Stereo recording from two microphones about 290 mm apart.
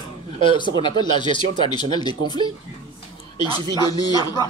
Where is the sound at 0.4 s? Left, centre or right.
Centre.